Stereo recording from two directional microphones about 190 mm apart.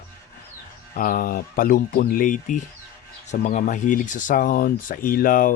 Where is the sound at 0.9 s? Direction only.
45° left (ahead or behind).